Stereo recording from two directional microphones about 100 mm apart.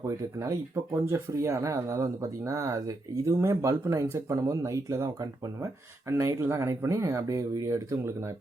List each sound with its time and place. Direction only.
0.2 s speech: 30° right (ahead or behind)